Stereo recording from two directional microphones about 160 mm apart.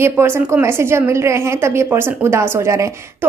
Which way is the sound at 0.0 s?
15° right (ahead or behind).